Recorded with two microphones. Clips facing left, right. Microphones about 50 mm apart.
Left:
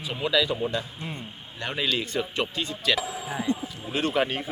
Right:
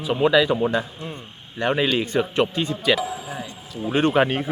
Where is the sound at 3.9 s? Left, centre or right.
Right.